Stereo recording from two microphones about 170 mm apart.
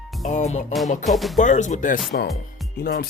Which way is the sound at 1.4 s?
45° left (ahead or behind).